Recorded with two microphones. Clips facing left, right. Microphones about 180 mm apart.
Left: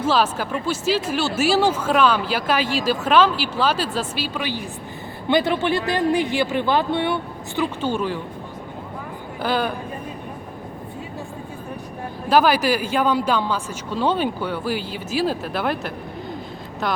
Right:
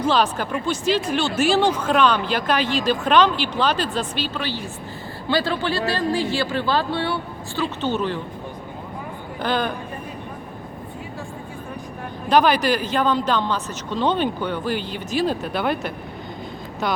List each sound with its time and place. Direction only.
0.0 s speech: 5° left (ahead or behind)
9.4 s speech: 5° left (ahead or behind)
12.3 s speech: 5° left (ahead or behind)